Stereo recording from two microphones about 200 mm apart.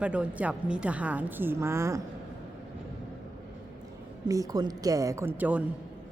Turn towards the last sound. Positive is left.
turn(degrees=-10)  # may be behind; listen again after turning